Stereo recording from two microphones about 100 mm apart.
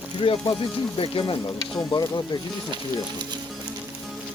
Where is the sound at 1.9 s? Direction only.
45° left (ahead or behind).